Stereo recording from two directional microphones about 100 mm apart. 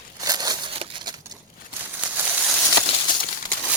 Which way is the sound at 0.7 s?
70° right (ahead or behind).